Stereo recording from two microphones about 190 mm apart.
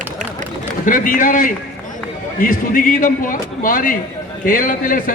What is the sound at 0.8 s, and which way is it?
A man's voice, 45° left (ahead or behind).